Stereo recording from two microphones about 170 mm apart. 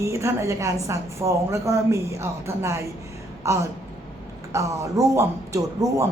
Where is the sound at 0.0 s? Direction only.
15° right (ahead or behind).